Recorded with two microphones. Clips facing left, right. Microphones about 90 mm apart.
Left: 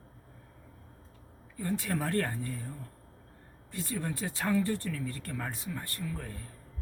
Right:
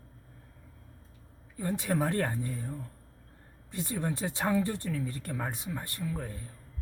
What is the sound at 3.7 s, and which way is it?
Speech, 20° right (ahead or behind).